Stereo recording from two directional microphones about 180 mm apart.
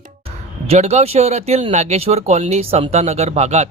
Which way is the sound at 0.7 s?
35° right (ahead or behind).